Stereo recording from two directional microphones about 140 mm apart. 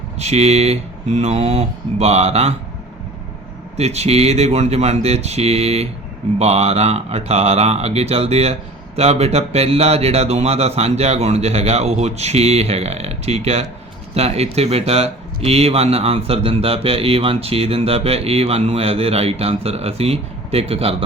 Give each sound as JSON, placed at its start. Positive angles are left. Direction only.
{"t": 0.2, "sound": "speech", "side_deg": -50}
{"t": 3.8, "sound": "speech", "side_deg": -50}